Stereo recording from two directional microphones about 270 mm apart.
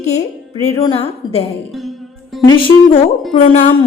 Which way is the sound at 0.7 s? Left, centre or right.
Centre.